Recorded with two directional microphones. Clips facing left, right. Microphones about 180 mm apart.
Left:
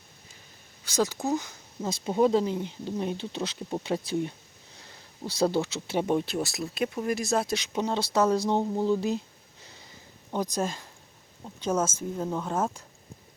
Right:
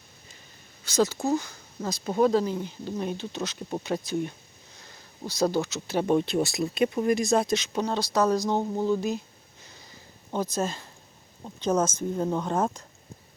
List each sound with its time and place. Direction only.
0.9 s speech: 10° left (ahead or behind); by 6.0 s 30° left (ahead or behind)
6.0 s speech: 10° left (ahead or behind)
7.9 s speech: 25° left (ahead or behind)
8.5 s speech: centre (ahead or behind)
8.9 s speech: 30° left (ahead or behind)
10.3 s speech: 15° left (ahead or behind)